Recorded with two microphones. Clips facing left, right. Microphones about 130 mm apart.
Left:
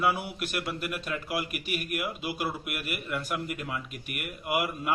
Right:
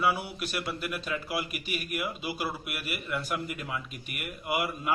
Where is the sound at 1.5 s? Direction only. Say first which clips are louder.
Left 2 dB; 65° left (ahead or behind).